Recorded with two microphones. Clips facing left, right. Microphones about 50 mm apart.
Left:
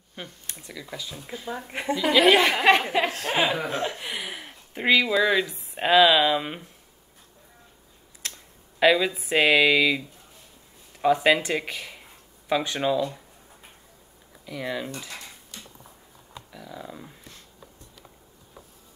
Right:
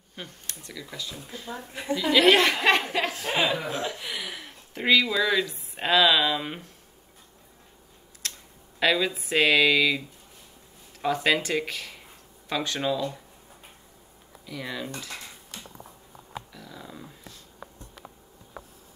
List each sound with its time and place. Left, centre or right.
0.1 s a woman's voice: centre
3.1 s a woman's voice: left
3.3 s speech: left
4.7 s speech: centre
8.7 s speech: centre
14.4 s speech: centre
16.5 s a sound: centre